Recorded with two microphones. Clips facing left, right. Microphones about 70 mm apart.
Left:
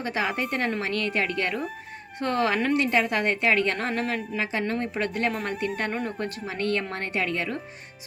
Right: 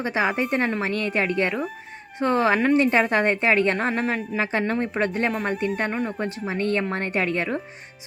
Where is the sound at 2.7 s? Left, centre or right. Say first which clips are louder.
Right 4 dB; right.